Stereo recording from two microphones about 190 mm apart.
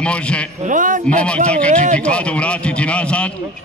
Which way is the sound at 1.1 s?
5° left (ahead or behind).